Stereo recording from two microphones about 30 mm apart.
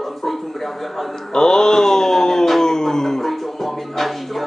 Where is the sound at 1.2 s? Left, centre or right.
Centre.